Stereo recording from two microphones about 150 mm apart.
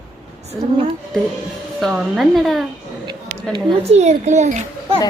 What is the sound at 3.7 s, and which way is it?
Speech, 45° right (ahead or behind).